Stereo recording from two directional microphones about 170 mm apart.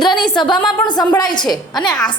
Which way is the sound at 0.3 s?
25° left (ahead or behind).